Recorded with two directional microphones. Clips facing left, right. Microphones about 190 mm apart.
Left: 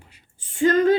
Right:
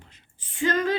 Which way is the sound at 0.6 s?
35° left (ahead or behind).